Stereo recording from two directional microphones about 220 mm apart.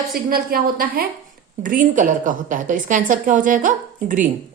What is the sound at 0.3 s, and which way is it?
A woman's voice, 40° right (ahead or behind).